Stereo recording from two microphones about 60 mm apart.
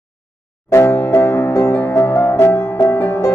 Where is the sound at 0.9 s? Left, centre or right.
Left.